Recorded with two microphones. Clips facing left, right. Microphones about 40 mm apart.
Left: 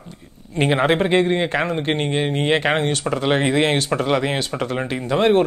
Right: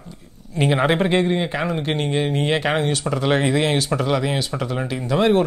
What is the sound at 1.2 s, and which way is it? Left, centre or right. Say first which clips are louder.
Speech: left 2 dB; left.